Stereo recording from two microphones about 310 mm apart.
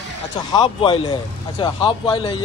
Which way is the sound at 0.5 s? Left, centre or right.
Centre.